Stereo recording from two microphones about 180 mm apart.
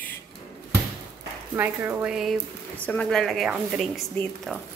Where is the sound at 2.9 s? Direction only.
5° left (ahead or behind).